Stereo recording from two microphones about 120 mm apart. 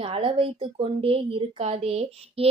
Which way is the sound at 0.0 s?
50° right (ahead or behind).